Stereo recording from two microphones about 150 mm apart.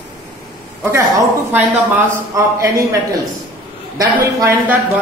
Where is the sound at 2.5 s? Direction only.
20° right (ahead or behind).